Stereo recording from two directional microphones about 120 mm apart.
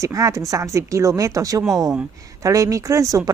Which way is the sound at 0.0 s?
25° right (ahead or behind).